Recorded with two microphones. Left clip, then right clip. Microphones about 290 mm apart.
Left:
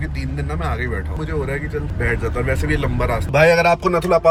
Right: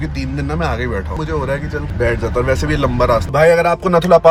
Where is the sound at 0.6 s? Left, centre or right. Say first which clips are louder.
Right 5 dB; centre.